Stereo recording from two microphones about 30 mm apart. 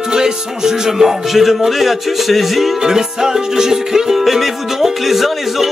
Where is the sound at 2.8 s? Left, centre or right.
Centre.